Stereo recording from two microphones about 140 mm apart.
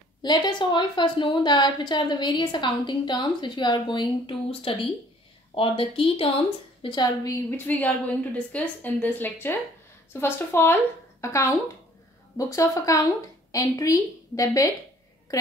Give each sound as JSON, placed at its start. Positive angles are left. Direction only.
{"t": 0.2, "sound": "a woman's voice", "side_deg": 30}
{"t": 7.5, "sound": "a woman's voice", "side_deg": 10}